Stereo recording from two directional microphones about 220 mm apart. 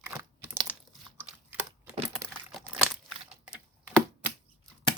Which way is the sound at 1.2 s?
5° right (ahead or behind).